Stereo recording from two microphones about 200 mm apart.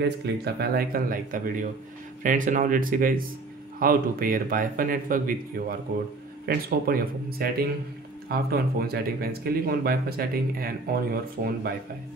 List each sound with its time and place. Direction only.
0.2 s speech: 55° right (ahead or behind)